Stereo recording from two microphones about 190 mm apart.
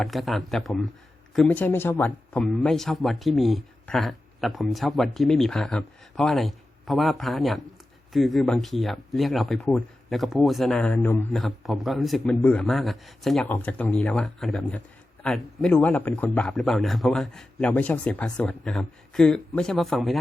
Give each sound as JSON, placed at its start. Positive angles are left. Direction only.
{"t": 0.0, "sound": "speech", "side_deg": 0}